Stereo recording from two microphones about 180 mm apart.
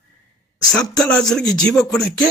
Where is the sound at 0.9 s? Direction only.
Centre (ahead or behind).